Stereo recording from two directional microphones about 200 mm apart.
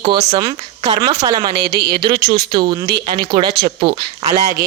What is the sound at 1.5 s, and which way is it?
Speech, 55° right (ahead or behind).